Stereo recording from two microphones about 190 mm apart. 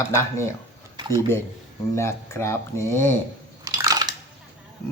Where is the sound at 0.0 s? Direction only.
15° left (ahead or behind).